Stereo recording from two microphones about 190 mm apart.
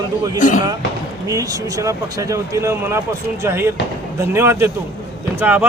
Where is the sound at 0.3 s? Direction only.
45° left (ahead or behind).